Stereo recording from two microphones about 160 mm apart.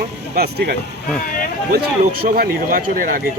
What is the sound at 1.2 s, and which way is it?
Speech, 60° left (ahead or behind).